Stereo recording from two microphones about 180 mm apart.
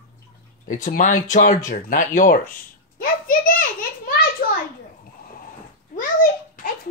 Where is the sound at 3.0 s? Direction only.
50° left (ahead or behind).